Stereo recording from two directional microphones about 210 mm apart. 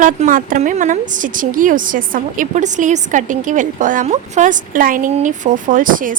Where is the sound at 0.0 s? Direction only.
40° right (ahead or behind).